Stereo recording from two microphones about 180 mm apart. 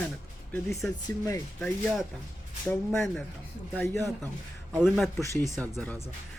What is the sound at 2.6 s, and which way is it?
Speech, 5° left (ahead or behind).